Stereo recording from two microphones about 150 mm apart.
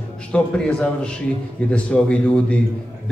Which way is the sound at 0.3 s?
5° left (ahead or behind).